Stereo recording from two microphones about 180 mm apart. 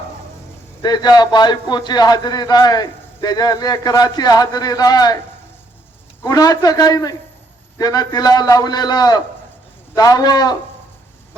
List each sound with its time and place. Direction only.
0.8 s a man's voice: 20° left (ahead or behind)
6.2 s a man's voice: 20° left (ahead or behind)